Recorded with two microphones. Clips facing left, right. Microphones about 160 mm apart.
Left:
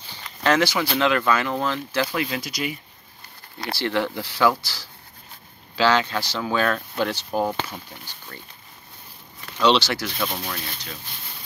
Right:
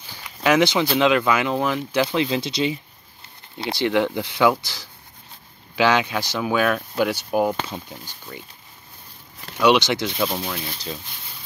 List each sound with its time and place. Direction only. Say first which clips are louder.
0.2 s a sound: right 3 dB; 10° right (ahead or behind)
0.7 s speech: right 3 dB; 20° right (ahead or behind)
9.6 s speech: right 2 dB; 15° right (ahead or behind)